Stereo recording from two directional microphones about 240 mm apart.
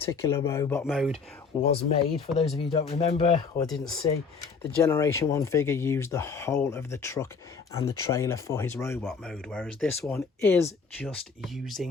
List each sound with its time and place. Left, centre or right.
0.0 s speech: centre
1.7 s speech: left; by 11.9 s centre